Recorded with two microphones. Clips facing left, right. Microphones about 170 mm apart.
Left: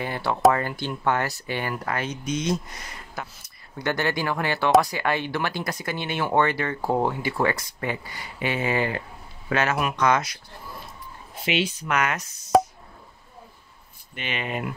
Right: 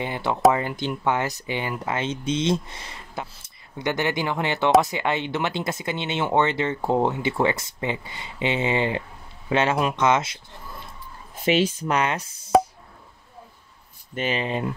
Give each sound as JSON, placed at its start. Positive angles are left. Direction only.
{"t": 0.0, "sound": "speech", "side_deg": -20}
{"t": 11.3, "sound": "speech", "side_deg": -45}
{"t": 11.9, "sound": "speech", "side_deg": -30}
{"t": 14.1, "sound": "speech", "side_deg": -35}